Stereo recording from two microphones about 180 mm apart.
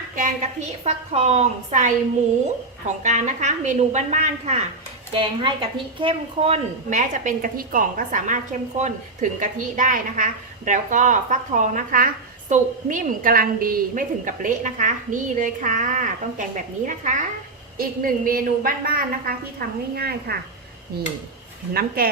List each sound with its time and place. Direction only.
0.9 s a woman's voice: 35° right (ahead or behind)
5.4 s a woman's voice: 25° right (ahead or behind); by 20.4 s 60° right (ahead or behind)
21.7 s a woman's voice: 55° right (ahead or behind)